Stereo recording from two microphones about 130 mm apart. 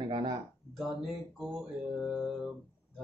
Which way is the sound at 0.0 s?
35° right (ahead or behind).